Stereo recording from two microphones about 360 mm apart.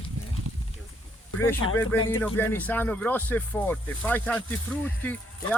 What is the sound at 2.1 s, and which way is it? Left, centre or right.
Speech, centre.